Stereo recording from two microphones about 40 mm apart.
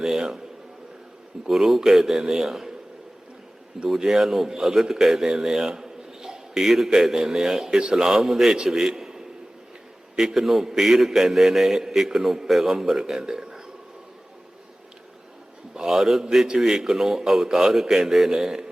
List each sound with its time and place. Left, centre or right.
0.0 s a sound: centre
1.5 s a man's voice: centre
3.8 s a man's voice: centre
15.7 s a man's voice: centre